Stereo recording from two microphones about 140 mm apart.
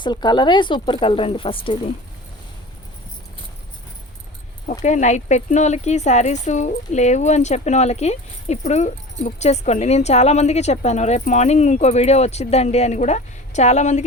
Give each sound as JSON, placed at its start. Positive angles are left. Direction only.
{"t": 0.0, "sound": "speech", "side_deg": 30}
{"t": 4.8, "sound": "speech", "side_deg": 60}